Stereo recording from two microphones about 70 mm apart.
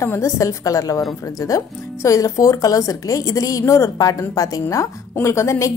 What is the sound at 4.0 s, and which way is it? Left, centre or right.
A woman's voice, left.